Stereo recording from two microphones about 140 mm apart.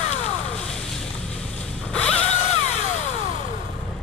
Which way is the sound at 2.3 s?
50° left (ahead or behind).